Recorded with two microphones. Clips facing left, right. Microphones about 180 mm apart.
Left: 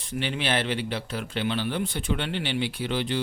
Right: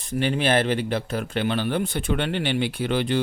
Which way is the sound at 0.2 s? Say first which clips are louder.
Right 6 dB; 45° right (ahead or behind).